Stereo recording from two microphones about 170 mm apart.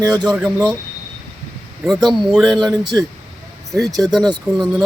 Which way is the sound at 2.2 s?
5° right (ahead or behind).